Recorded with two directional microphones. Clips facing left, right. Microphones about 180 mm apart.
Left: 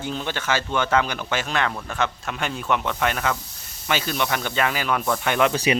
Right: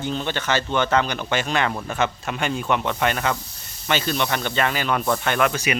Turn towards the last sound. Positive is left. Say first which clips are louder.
# left 3 dB
turn(degrees=30)  # may be behind; listen again after turning